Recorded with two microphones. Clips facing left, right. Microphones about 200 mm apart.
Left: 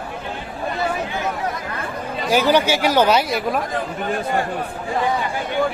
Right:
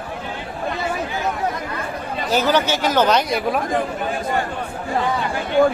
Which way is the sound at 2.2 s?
10° left (ahead or behind).